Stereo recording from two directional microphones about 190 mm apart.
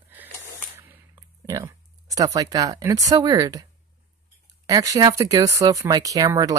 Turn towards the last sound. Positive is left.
turn(degrees=-20)  # may be behind; listen again after turning